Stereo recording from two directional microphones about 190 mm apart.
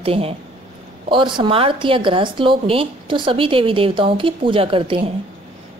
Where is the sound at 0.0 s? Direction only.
30° right (ahead or behind).